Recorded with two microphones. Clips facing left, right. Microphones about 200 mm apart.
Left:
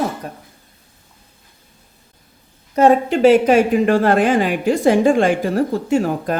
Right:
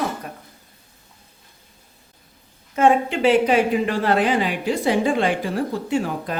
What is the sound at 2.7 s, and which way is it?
A woman's voice, 40° left (ahead or behind).